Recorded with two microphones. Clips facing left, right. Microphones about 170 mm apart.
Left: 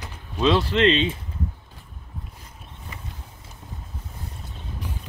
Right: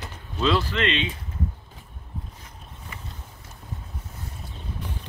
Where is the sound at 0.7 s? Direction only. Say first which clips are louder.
Left 6 dB; 30° left (ahead or behind).